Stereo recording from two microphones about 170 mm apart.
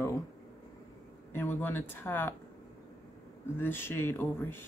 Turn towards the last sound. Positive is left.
turn(degrees=10)  # may be behind; listen again after turning